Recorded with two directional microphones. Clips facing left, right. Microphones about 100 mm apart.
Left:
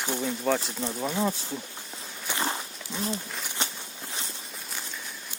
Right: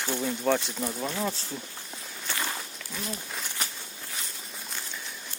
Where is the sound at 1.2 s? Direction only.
15° left (ahead or behind).